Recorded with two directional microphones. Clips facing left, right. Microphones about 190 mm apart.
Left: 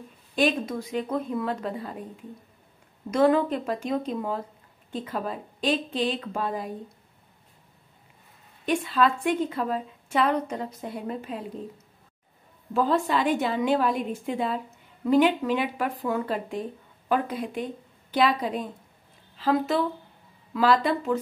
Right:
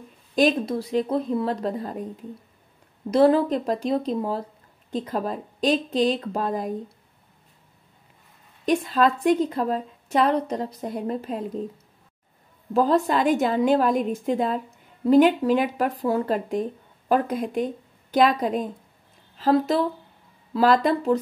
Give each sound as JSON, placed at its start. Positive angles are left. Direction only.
{"t": 0.4, "sound": "a woman's voice", "side_deg": -35}
{"t": 3.1, "sound": "a woman's voice", "side_deg": -35}
{"t": 8.6, "sound": "a woman's voice", "side_deg": -40}
{"t": 12.7, "sound": "a woman's voice", "side_deg": -40}